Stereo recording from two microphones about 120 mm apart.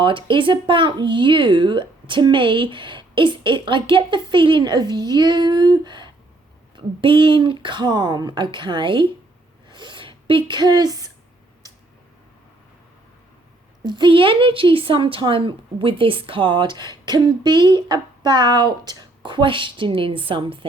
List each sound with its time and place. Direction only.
0.0 s speech: 45° right (ahead or behind)
9.6 s a sound: 40° right (ahead or behind)
13.8 s a woman's voice: 40° right (ahead or behind)